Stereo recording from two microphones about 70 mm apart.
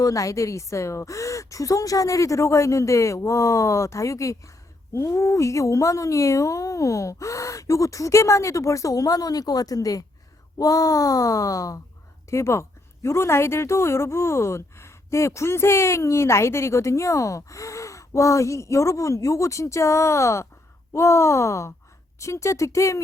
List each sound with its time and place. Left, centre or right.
0.0 s a woman's voice: left
12.3 s a woman's voice: left